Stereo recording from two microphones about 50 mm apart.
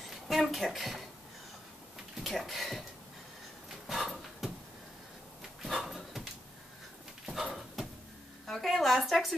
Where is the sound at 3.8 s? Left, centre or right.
Centre.